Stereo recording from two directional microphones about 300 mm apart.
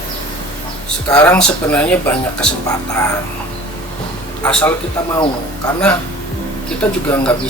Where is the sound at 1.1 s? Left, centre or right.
Centre.